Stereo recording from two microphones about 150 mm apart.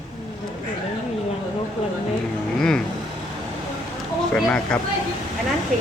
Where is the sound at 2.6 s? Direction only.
5° left (ahead or behind).